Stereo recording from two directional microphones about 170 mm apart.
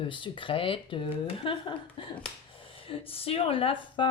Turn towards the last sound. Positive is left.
turn(degrees=30)  # may be behind; listen again after turning